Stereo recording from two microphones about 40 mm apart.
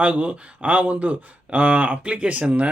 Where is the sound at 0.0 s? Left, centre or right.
Right.